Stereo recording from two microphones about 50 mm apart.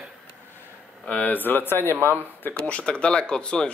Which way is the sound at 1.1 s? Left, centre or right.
Left.